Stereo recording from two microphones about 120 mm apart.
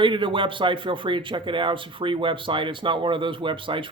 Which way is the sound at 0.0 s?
45° right (ahead or behind).